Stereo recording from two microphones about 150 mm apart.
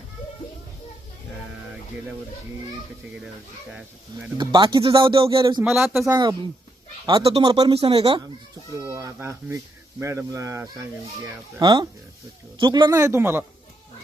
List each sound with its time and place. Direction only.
3.7 s speech: 5° right (ahead or behind)
4.4 s speech: 30° right (ahead or behind)
5.6 s speech: 5° right (ahead or behind)
7.0 s speech: 30° right (ahead or behind)
8.7 s speech: 20° right (ahead or behind)